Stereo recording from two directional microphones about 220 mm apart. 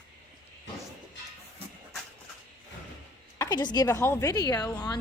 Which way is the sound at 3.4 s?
20° left (ahead or behind).